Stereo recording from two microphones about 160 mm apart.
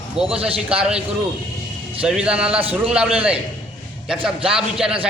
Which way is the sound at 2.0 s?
5° right (ahead or behind).